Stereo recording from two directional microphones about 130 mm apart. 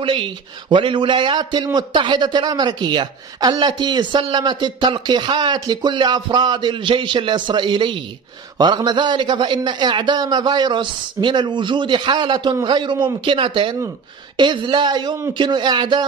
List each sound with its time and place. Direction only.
0.0 s a man's voice: 40° right (ahead or behind)